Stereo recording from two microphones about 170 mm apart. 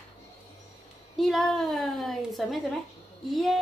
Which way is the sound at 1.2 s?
Centre (ahead or behind).